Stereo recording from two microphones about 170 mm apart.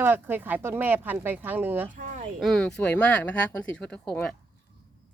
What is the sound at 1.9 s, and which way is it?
Speech, 50° right (ahead or behind).